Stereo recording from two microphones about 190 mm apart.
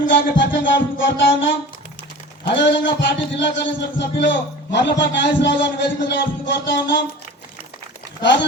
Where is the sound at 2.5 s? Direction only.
70° left (ahead or behind).